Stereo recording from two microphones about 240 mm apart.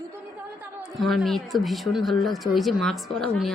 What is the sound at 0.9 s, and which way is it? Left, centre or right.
Speech, centre.